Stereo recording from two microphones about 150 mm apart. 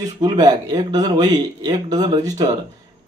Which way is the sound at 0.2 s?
25° right (ahead or behind).